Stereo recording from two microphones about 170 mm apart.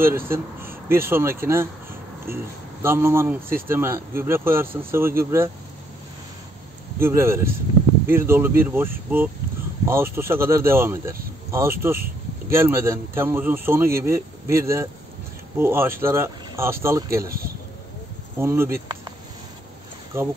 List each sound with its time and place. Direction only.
0.0 s a man's voice: 15° right (ahead or behind)
7.0 s speech: 15° right (ahead or behind)
18.4 s speech: 15° right (ahead or behind)
20.1 s speech: 15° right (ahead or behind)